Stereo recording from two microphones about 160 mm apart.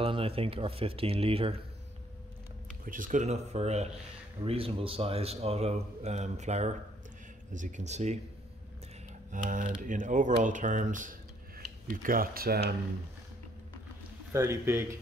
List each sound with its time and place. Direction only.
0.0 s speech: 35° right (ahead or behind)
2.8 s speech: 60° right (ahead or behind)
9.3 s speech: 55° right (ahead or behind); by 12.7 s 80° right
14.3 s speech: 15° right (ahead or behind)